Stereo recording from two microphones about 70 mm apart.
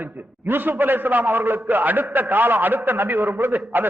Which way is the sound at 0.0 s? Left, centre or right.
Right.